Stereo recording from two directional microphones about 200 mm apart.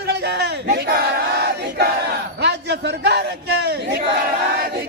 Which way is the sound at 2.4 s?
60° right (ahead or behind).